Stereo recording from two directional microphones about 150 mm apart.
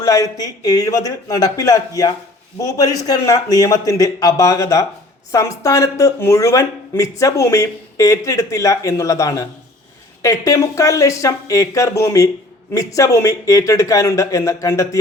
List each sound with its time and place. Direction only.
0.0 s speech: 25° left (ahead or behind)